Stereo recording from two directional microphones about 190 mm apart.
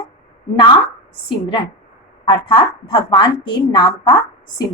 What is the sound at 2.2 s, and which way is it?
A woman's voice, 25° left (ahead or behind).